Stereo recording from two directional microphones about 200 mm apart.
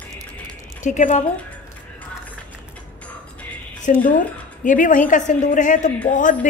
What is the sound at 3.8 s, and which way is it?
A woman's voice, 40° left (ahead or behind).